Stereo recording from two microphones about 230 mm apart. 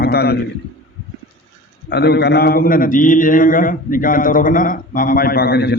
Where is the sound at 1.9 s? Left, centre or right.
Left.